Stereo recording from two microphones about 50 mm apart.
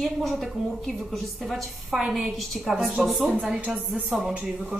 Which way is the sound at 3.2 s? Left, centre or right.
Right.